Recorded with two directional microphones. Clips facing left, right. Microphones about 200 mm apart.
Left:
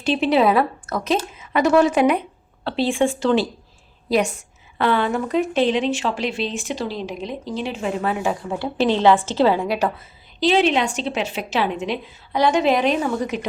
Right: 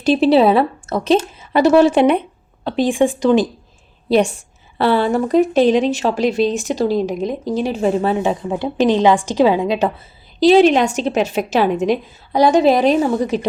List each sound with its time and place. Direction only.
0.0 s speech: 35° right (ahead or behind)
2.6 s a woman's voice: 15° right (ahead or behind)
4.1 s a woman's voice: 30° right (ahead or behind)
10.4 s speech: 40° right (ahead or behind)